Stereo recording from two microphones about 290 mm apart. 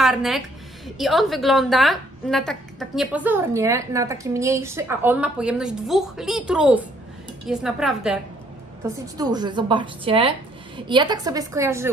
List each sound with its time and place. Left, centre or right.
0.0 s a woman's voice: centre
8.8 s a woman's voice: centre